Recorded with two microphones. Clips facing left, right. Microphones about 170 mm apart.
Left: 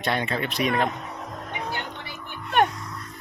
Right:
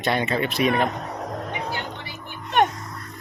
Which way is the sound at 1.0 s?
40° right (ahead or behind).